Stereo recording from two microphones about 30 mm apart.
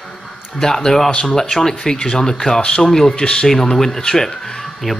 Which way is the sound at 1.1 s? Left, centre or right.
Left.